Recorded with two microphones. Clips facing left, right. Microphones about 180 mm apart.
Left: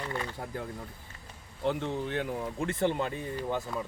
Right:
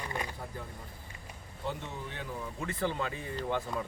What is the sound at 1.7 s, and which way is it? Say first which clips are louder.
Speech: left 9 dB; 80° left.